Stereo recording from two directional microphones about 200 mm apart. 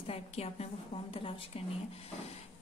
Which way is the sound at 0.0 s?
30° left (ahead or behind).